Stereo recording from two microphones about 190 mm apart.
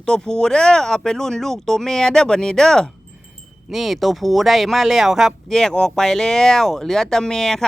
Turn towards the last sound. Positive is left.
turn(degrees=5)  # may be behind; listen again after turning